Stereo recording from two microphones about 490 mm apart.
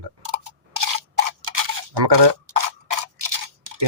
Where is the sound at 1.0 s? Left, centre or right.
Right.